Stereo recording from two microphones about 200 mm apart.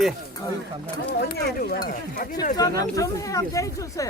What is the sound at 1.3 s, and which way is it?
Speech, 50° left (ahead or behind).